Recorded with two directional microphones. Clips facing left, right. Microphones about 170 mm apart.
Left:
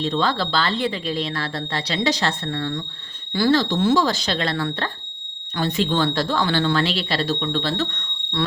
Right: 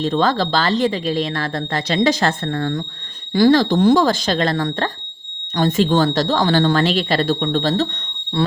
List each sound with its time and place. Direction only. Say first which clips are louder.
0.0 s speech: right 4 dB; 45° right (ahead or behind)